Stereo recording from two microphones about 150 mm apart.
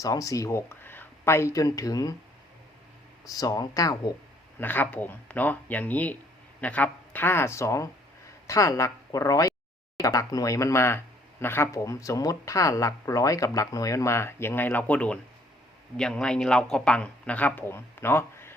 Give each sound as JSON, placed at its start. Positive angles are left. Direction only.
{"t": 0.0, "sound": "speech", "side_deg": 25}
{"t": 3.2, "sound": "speech", "side_deg": 25}
{"t": 4.6, "sound": "speech", "side_deg": 10}